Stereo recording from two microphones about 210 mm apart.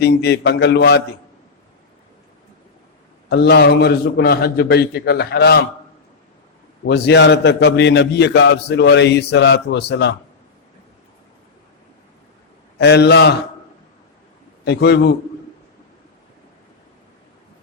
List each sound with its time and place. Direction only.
0.0 s a man's voice: 50° left (ahead or behind)
3.2 s a man's voice: 55° left (ahead or behind)
6.8 s a man's voice: 50° left (ahead or behind)
12.8 s a man's voice: 55° left (ahead or behind)
14.6 s a man's voice: 55° left (ahead or behind)